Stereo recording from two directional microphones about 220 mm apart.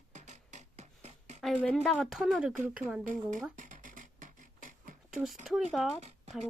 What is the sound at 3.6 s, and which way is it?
Beatboxing, 35° right (ahead or behind).